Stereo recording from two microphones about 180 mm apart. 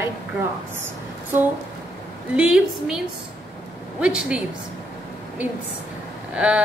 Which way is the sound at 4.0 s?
5° right (ahead or behind).